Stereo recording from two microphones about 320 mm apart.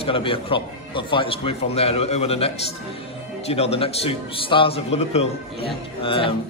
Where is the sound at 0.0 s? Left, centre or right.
Centre.